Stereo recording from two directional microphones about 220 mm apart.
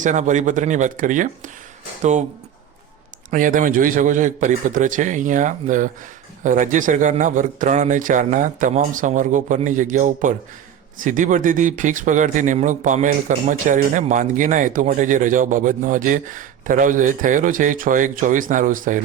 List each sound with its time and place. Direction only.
0.0 s speech: 35° right (ahead or behind)
3.2 s speech: 40° right (ahead or behind)